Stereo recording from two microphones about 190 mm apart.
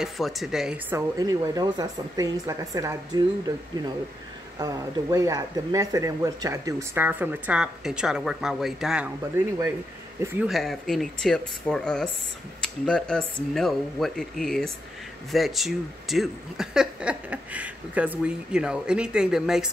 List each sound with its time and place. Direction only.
0.0 s speech: centre (ahead or behind)
0.9 s speech: 15° right (ahead or behind)
10.2 s speech: centre (ahead or behind)